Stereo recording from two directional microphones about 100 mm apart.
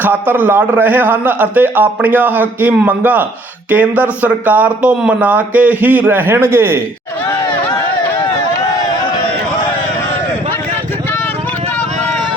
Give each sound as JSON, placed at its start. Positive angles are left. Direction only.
{"t": 0.0, "sound": "a man's voice", "side_deg": -20}